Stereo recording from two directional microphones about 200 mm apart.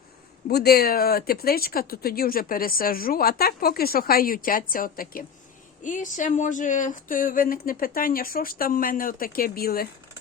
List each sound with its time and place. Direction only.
0.4 s speech: 50° left (ahead or behind)